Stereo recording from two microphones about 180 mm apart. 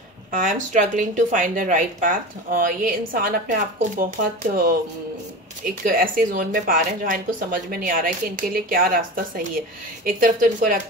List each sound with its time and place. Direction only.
0.3 s speech: 45° right (ahead or behind)
5.7 s speech: 55° right (ahead or behind)